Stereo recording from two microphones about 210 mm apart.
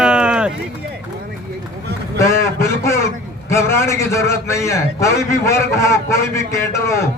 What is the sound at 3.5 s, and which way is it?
A man's voice, 15° left (ahead or behind).